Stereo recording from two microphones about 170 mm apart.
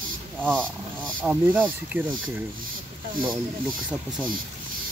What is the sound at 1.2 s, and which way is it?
Speech, 5° right (ahead or behind).